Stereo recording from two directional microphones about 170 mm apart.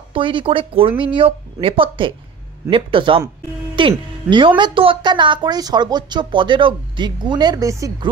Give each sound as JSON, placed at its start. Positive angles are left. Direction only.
{"t": 0.1, "sound": "a woman's voice", "side_deg": -30}